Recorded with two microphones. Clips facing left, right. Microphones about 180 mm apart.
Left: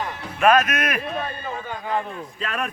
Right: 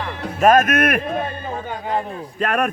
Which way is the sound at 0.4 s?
50° right (ahead or behind).